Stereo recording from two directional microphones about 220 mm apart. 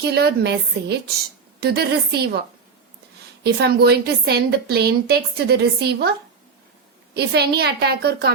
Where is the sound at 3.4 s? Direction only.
45° right (ahead or behind).